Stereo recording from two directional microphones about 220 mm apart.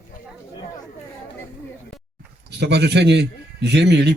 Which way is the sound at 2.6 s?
50° right (ahead or behind).